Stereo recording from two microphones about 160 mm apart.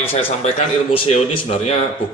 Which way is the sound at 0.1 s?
40° left (ahead or behind).